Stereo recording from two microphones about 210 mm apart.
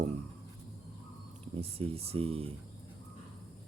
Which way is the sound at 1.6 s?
30° right (ahead or behind).